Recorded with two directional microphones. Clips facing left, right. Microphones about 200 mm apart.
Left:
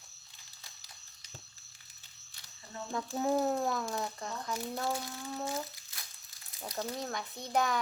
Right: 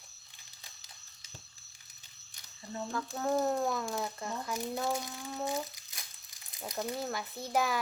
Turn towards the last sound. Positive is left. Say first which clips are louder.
# even
turn(degrees=-5)  # may be behind; listen again after turning